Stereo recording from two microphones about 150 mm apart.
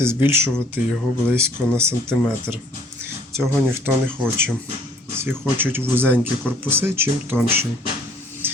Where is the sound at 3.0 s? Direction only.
20° right (ahead or behind).